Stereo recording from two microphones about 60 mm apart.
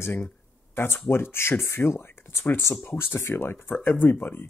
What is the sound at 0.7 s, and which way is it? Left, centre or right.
Speech, left.